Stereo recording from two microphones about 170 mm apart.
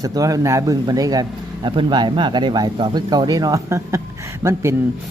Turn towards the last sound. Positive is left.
turn(degrees=-15)  # may be behind; listen again after turning